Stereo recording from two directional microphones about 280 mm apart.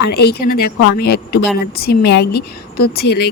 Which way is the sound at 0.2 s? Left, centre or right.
Left.